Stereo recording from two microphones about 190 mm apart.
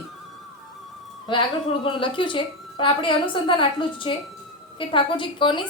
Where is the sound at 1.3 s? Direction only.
25° left (ahead or behind).